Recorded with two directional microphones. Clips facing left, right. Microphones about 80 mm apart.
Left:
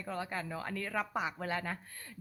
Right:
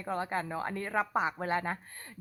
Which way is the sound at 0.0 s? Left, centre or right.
Right.